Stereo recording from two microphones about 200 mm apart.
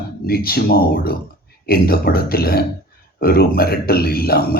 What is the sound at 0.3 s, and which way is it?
A man's voice, 50° left (ahead or behind).